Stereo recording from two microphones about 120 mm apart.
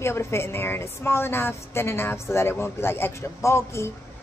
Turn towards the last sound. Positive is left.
turn(degrees=20)  # may be behind; listen again after turning